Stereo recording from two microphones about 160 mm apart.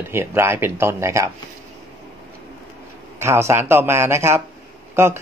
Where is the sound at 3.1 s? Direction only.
15° right (ahead or behind).